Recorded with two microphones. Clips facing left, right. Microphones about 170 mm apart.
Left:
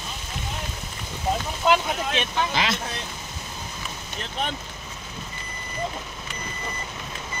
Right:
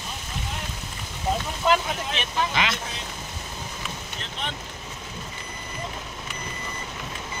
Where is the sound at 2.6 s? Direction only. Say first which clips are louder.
Even; 35° left (ahead or behind).